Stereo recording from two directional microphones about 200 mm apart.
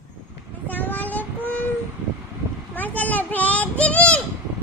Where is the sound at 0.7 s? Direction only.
10° left (ahead or behind).